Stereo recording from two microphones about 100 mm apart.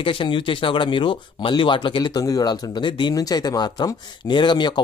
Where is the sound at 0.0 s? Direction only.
60° left (ahead or behind).